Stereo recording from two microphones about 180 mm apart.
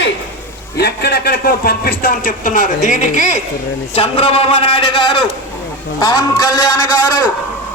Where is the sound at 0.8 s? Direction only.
65° left (ahead or behind); by 3.3 s 40° left (ahead or behind).